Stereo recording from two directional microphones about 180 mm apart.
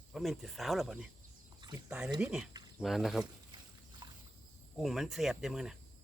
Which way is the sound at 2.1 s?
5° right (ahead or behind).